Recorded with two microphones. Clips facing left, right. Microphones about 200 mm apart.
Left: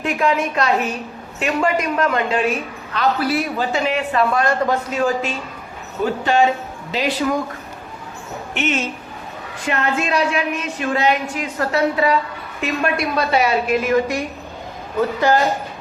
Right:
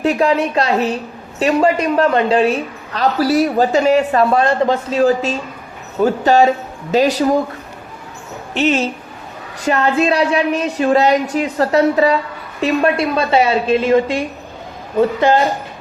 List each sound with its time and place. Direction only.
0.0 s a man's voice: 35° right (ahead or behind)
8.5 s a man's voice: 35° right (ahead or behind)